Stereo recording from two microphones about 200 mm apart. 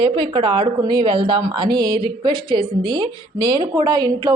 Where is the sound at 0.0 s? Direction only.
25° right (ahead or behind).